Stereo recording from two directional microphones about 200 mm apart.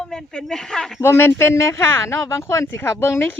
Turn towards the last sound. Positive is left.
turn(degrees=10)  # may be behind; listen again after turning